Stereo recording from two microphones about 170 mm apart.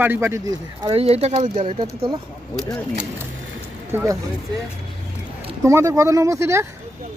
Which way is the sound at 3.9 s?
15° right (ahead or behind).